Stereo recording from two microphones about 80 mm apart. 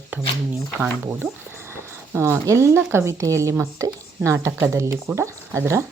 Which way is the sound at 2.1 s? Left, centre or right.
Right.